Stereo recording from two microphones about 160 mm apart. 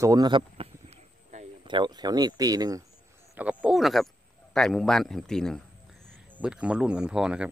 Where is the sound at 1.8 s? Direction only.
25° right (ahead or behind).